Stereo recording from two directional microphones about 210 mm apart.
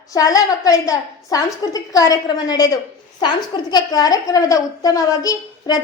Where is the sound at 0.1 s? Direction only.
15° left (ahead or behind).